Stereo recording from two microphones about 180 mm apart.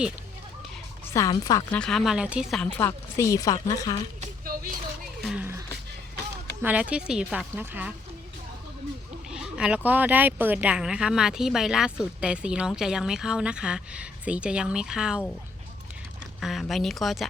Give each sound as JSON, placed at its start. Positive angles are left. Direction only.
{"t": 1.1, "sound": "a woman's voice", "side_deg": 20}
{"t": 1.7, "sound": "a woman's voice", "side_deg": 5}
{"t": 4.2, "sound": "a sound", "side_deg": -50}
{"t": 5.2, "sound": "music", "side_deg": -5}
{"t": 6.6, "sound": "a woman's voice", "side_deg": -10}
{"t": 9.3, "sound": "speech", "side_deg": -5}
{"t": 16.4, "sound": "speech", "side_deg": 0}